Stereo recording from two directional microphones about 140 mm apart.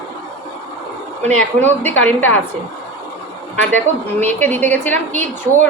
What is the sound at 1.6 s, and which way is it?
Speech, 15° left (ahead or behind).